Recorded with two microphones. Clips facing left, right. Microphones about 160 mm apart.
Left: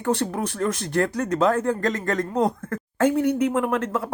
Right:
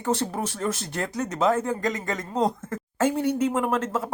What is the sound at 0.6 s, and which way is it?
Speech, 20° right (ahead or behind).